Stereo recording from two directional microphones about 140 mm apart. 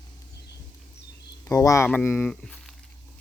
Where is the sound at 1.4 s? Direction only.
25° left (ahead or behind); by 2.7 s 5° left (ahead or behind).